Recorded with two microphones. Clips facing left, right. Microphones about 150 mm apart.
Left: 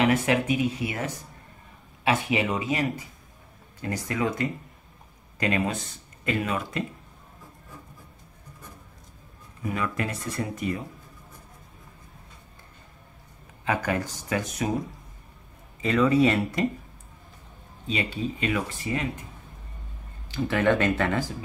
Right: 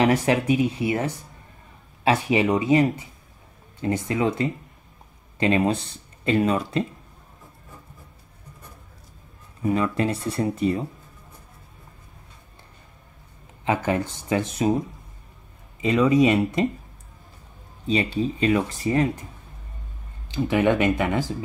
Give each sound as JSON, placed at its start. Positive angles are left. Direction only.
{"t": 0.0, "sound": "speech", "side_deg": -35}
{"t": 9.6, "sound": "speech", "side_deg": -30}
{"t": 13.7, "sound": "speech", "side_deg": -25}
{"t": 15.8, "sound": "speech", "side_deg": -15}
{"t": 17.8, "sound": "speech", "side_deg": -35}
{"t": 20.2, "sound": "speech", "side_deg": -20}